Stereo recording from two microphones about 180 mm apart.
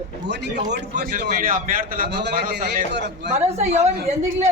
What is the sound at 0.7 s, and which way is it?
A man's voice, 65° right (ahead or behind).